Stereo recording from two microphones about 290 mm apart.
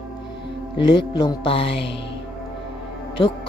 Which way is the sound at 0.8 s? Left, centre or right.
Centre.